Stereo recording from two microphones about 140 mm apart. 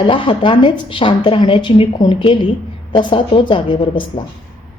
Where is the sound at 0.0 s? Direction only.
40° left (ahead or behind).